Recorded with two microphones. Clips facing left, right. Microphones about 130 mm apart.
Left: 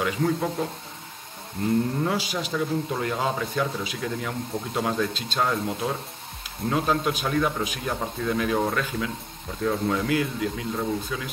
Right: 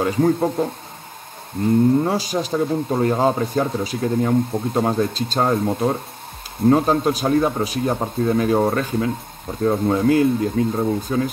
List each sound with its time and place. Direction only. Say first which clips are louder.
0.0 s speech: right 7 dB; 35° right (ahead or behind)
1.6 s a sound: right 6 dB; 50° right (ahead or behind)
2.0 s speech: right 6 dB; 40° right (ahead or behind)